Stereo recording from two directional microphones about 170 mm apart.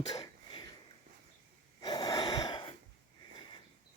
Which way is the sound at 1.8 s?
25° left (ahead or behind).